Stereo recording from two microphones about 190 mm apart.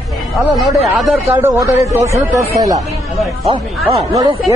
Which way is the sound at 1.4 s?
15° right (ahead or behind).